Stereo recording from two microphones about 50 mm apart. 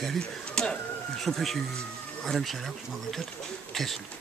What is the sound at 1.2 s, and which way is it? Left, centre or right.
Speech, centre.